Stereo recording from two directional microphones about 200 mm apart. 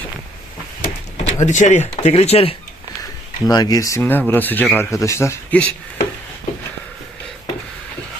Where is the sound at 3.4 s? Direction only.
20° left (ahead or behind).